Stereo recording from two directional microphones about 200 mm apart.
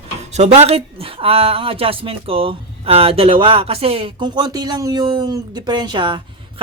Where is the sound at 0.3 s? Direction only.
35° right (ahead or behind).